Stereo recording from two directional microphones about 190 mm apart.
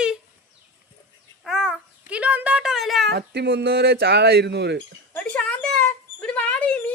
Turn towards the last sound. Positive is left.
turn(degrees=10)  # may be behind; listen again after turning